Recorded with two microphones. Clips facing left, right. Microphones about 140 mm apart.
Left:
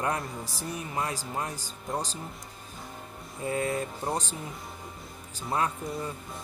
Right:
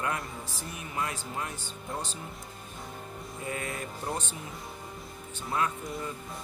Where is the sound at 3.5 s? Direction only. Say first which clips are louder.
Left 7 dB; 30° left (ahead or behind).